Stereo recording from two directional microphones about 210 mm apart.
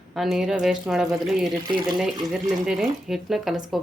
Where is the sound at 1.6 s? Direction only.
20° right (ahead or behind).